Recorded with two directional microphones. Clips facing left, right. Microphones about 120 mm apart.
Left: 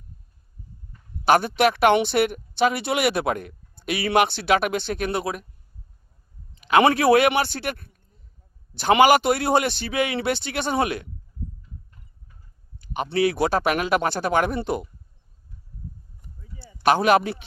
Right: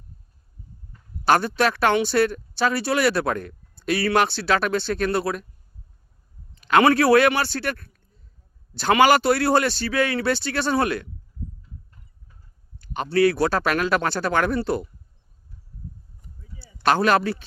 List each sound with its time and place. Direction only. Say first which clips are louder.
1.2 s a man's voice: left 1 dB; 15° left (ahead or behind)
6.6 s a man's voice: right 1 dB; 15° left (ahead or behind)
12.8 s a man's voice: right 3 dB; 15° left (ahead or behind)
16.6 s a sound: left 3 dB; 50° left (ahead or behind)
16.8 s a man's voice: left 1 dB; 15° left (ahead or behind)